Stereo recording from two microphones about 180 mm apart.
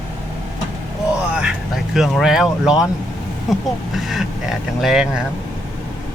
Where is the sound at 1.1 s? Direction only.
5° right (ahead or behind).